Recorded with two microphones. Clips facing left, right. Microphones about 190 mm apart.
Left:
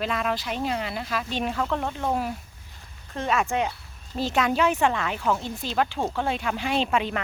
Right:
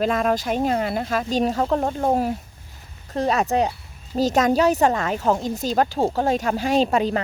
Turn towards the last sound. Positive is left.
turn(degrees=-40)  # may be behind; listen again after turning